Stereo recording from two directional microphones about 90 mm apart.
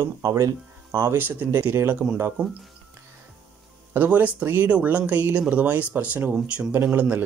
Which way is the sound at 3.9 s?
20° right (ahead or behind).